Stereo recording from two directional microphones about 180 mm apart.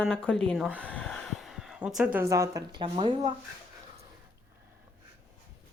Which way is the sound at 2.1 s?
15° right (ahead or behind).